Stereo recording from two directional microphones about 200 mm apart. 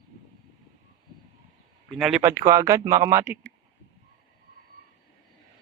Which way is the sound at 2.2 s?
15° right (ahead or behind).